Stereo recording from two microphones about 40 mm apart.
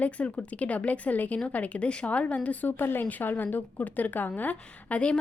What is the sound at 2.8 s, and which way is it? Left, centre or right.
A woman's voice, left.